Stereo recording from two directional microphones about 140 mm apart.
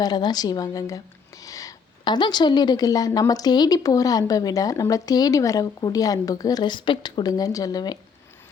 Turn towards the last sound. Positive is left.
turn(degrees=30)  # may be behind; listen again after turning